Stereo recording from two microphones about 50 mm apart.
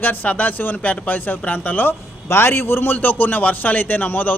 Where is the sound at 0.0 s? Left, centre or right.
Left.